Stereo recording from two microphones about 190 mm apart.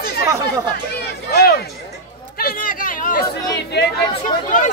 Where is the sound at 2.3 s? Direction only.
50° left (ahead or behind).